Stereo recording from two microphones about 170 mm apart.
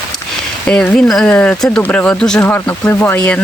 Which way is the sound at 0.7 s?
5° left (ahead or behind).